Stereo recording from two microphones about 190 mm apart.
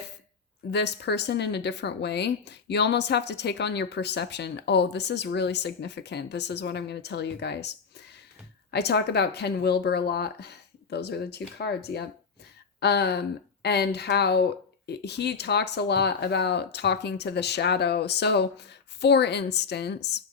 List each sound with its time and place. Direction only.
0.7 s speech: 65° left (ahead or behind)